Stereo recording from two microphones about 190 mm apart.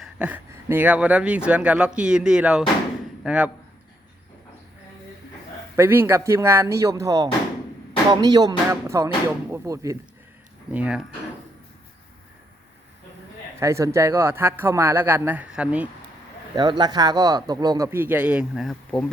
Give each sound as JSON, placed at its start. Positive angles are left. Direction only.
{"t": 0.0, "sound": "speech", "side_deg": -5}
{"t": 5.7, "sound": "speech", "side_deg": -15}
{"t": 13.6, "sound": "speech", "side_deg": -15}
{"t": 16.6, "sound": "speech", "side_deg": -20}